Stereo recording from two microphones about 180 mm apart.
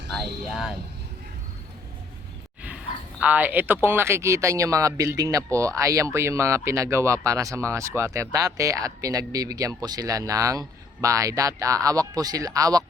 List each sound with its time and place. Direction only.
0.1 s speech: centre (ahead or behind)
3.2 s speech: 10° right (ahead or behind)